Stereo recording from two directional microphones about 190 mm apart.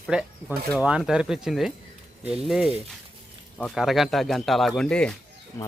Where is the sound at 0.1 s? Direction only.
5° right (ahead or behind).